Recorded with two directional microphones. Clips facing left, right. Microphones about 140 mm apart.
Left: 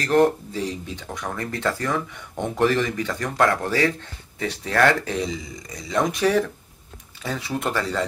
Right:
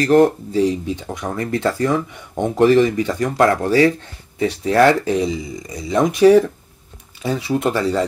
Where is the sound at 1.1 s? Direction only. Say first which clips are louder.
Right 5 dB; 15° right (ahead or behind).